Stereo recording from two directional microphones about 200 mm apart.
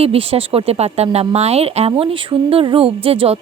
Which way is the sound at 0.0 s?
30° right (ahead or behind).